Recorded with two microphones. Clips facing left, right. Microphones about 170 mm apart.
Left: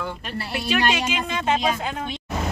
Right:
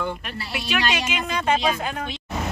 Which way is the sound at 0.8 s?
30° left (ahead or behind).